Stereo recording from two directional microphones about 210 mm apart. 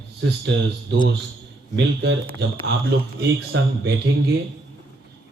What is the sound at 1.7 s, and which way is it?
Speech, 55° right (ahead or behind).